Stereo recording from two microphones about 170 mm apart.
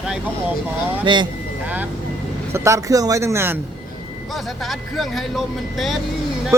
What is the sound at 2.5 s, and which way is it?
Speech, 20° right (ahead or behind).